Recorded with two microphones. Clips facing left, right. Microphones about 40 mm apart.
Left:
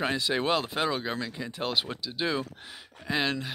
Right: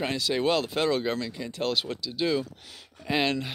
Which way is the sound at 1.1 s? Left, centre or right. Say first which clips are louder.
Right 2 dB; centre.